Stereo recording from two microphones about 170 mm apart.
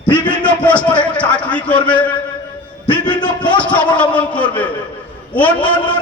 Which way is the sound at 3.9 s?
10° left (ahead or behind).